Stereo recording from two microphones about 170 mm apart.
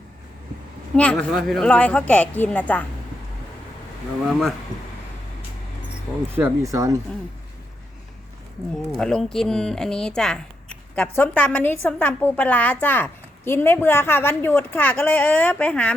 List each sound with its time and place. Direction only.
0.9 s a woman's voice: 5° left (ahead or behind)
6.3 s speech: 15° right (ahead or behind)
9.0 s a woman's voice: 5° left (ahead or behind)